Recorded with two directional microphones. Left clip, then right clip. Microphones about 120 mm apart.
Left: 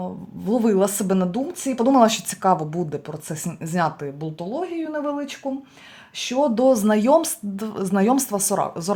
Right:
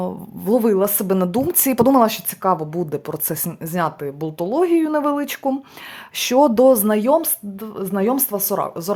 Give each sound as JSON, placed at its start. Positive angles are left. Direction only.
{"t": 0.0, "sound": "speech", "side_deg": -40}
{"t": 0.6, "sound": "speech", "side_deg": -25}
{"t": 1.3, "sound": "speech", "side_deg": -60}
{"t": 2.0, "sound": "speech", "side_deg": -15}
{"t": 4.4, "sound": "speech", "side_deg": -70}
{"t": 6.1, "sound": "speech", "side_deg": -75}
{"t": 6.7, "sound": "speech", "side_deg": -20}